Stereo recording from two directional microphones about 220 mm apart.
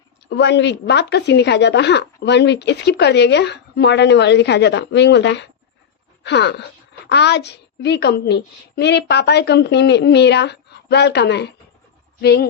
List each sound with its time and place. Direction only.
0.3 s speech: 50° left (ahead or behind)